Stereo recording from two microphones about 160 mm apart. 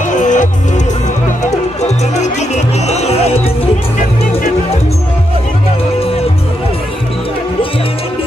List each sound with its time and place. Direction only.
0.0 s music: 50° left (ahead or behind)
1.8 s music: 45° left (ahead or behind)